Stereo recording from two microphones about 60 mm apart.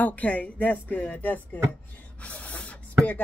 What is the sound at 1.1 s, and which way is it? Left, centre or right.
Music, left.